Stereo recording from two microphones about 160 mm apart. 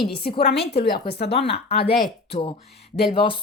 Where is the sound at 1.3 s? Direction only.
40° left (ahead or behind).